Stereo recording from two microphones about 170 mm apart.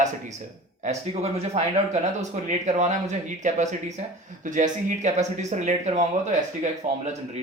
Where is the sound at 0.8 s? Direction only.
40° right (ahead or behind).